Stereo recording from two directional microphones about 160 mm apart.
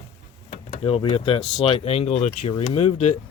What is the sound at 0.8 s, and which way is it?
Speech, 35° left (ahead or behind).